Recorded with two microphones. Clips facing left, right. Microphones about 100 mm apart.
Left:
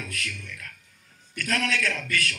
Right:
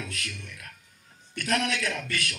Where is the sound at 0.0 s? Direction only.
25° right (ahead or behind).